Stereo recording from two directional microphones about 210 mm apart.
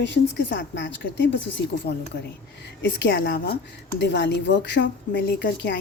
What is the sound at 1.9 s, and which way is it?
A woman's voice, 50° left (ahead or behind).